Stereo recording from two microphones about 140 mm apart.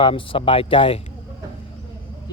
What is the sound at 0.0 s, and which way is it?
Speech, 40° left (ahead or behind).